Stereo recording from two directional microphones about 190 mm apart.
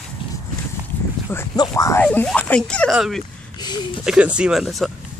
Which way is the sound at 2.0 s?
5° left (ahead or behind).